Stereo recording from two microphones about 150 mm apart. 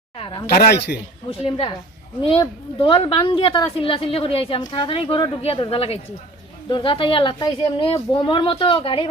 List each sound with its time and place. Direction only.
0.2 s a sound: 35° left (ahead or behind)
0.5 s speech: 90° left
1.3 s a woman's voice: 35° left (ahead or behind)